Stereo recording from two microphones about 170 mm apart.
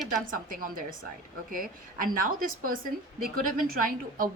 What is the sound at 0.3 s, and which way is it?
A woman's voice, 55° right (ahead or behind).